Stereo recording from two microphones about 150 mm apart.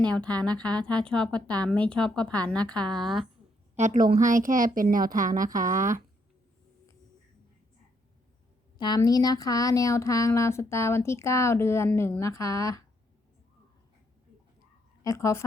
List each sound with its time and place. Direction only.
0.0 s a woman's voice: 10° left (ahead or behind)
3.8 s a woman's voice: 60° right (ahead or behind)
8.8 s speech: 25° left (ahead or behind)
15.0 s speech: 20° left (ahead or behind)